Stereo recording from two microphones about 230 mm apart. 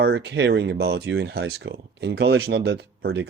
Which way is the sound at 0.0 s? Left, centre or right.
Right.